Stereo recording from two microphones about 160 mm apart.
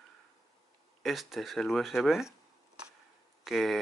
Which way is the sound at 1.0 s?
Centre (ahead or behind).